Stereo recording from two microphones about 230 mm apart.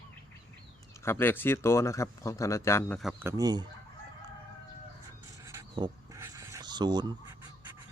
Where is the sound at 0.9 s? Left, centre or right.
Centre.